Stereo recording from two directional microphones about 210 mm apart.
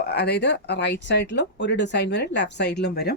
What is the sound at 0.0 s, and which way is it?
Speech, 50° left (ahead or behind).